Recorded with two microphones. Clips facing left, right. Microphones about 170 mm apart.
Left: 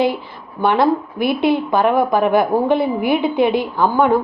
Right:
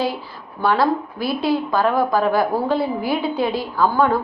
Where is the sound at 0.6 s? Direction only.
20° left (ahead or behind).